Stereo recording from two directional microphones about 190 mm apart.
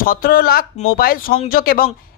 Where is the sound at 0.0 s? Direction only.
50° left (ahead or behind).